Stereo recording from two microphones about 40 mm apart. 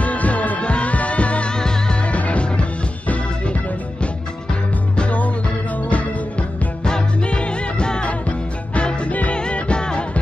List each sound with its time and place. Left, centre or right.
0.0 s music: left
1.5 s music: centre; by 6.7 s left
6.8 s music: centre